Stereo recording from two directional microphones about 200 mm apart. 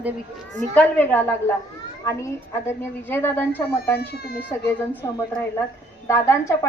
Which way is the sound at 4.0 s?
50° left (ahead or behind).